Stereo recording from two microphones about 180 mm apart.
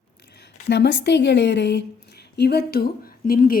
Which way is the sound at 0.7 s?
70° left (ahead or behind).